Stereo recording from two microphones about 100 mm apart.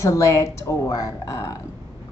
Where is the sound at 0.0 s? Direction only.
30° left (ahead or behind).